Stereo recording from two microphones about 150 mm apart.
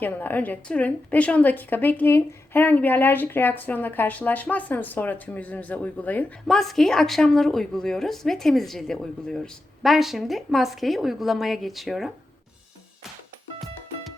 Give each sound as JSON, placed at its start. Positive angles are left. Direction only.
{"t": 0.0, "sound": "a woman's voice", "side_deg": 10}